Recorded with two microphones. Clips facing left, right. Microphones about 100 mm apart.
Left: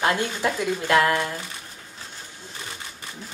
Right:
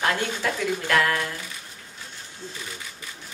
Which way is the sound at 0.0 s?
20° left (ahead or behind).